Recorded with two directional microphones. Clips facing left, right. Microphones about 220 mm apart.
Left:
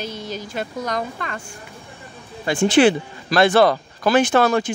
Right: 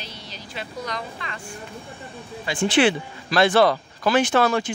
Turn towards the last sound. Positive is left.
turn(degrees=45)  # may be behind; listen again after turning